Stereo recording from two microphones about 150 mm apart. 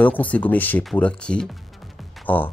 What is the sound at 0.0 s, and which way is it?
Speech, 10° left (ahead or behind).